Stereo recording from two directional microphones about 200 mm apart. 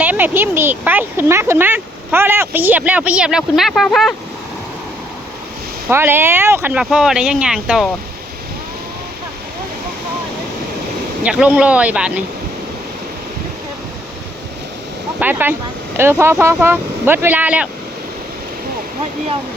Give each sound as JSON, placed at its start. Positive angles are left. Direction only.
{"t": 0.0, "sound": "speech", "side_deg": -10}
{"t": 5.9, "sound": "speech", "side_deg": -10}
{"t": 11.2, "sound": "speech", "side_deg": -5}
{"t": 15.2, "sound": "speech", "side_deg": -10}